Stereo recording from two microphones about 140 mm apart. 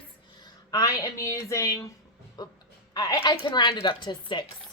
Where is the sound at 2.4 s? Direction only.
30° left (ahead or behind).